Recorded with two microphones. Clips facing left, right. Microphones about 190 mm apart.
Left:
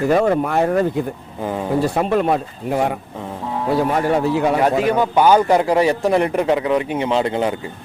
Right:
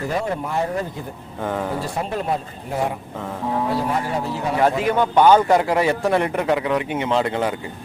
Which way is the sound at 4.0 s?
70° left (ahead or behind).